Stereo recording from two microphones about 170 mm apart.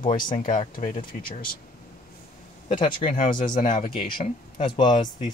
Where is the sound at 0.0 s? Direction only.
50° left (ahead or behind).